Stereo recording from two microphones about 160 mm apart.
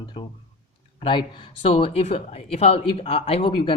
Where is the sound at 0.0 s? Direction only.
30° left (ahead or behind).